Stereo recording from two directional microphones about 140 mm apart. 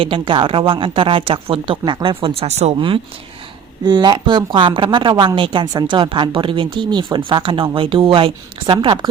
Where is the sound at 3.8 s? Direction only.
30° right (ahead or behind).